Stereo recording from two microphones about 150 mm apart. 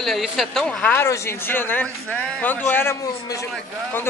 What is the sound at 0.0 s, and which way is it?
A man's voice, centre (ahead or behind).